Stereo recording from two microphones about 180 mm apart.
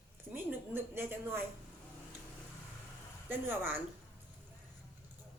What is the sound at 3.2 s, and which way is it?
Speech, 10° right (ahead or behind).